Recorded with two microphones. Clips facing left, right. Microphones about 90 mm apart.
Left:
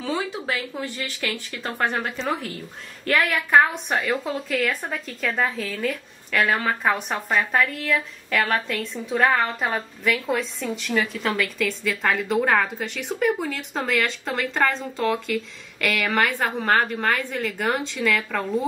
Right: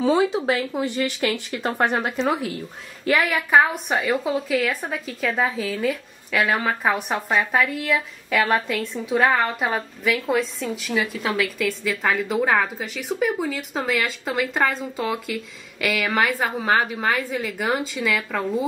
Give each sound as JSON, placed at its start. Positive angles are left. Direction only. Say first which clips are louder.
{"t": 0.3, "sound": "speech", "louder": "right 6 dB", "side_deg": -25}
{"t": 3.1, "sound": "a woman's voice", "louder": "right 1 dB", "side_deg": 0}